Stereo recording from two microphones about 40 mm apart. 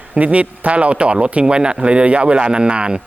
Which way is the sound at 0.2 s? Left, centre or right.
Right.